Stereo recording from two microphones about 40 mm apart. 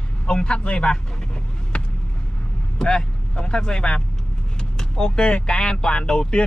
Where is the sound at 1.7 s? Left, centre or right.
Left.